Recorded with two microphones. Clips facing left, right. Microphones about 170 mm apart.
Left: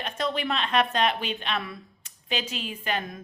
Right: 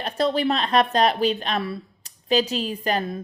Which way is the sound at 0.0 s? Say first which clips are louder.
Right 7 dB; 35° right (ahead or behind).